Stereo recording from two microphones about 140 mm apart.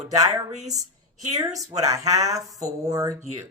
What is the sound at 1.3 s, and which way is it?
Speech, 25° right (ahead or behind).